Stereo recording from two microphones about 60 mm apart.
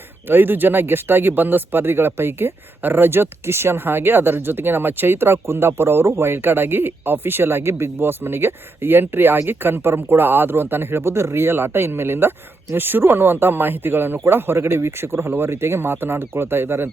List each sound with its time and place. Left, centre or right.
0.3 s speech: right